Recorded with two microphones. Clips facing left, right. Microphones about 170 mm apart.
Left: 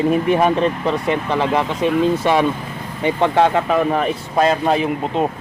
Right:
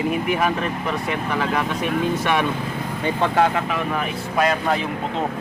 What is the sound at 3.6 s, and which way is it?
Speech, 35° left (ahead or behind).